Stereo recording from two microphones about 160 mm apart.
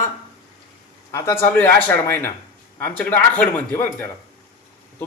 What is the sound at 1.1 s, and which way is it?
Speech, 15° left (ahead or behind).